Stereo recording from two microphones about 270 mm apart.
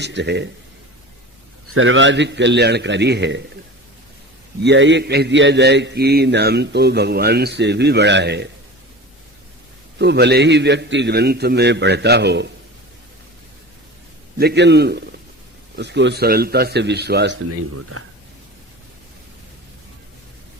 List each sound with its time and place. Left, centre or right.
0.0 s a man's voice: right
1.6 s a man's voice: right
4.6 s a man's voice: right
10.0 s a man's voice: right
14.3 s a man's voice: right
17.7 s speech: right